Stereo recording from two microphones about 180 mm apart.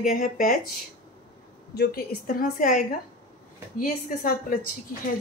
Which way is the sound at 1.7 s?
60° left (ahead or behind).